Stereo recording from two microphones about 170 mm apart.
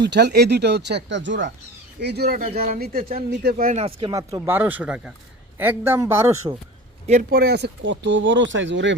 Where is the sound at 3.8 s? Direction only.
30° right (ahead or behind).